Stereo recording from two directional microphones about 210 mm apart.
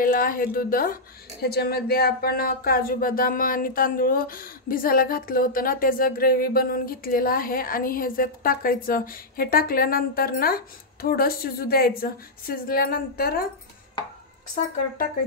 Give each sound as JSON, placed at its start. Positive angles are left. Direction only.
{"t": 0.0, "sound": "speech", "side_deg": 40}